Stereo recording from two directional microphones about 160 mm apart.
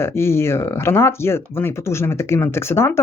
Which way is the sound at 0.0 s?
15° left (ahead or behind).